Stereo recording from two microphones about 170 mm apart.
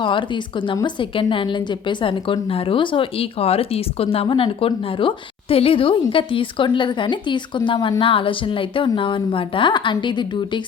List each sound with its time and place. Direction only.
0.0 s a woman's voice: 30° left (ahead or behind)